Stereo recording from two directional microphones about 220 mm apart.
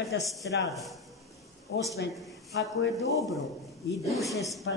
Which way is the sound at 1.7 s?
50° left (ahead or behind).